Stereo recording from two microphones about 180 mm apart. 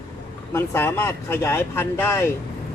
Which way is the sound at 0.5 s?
15° left (ahead or behind).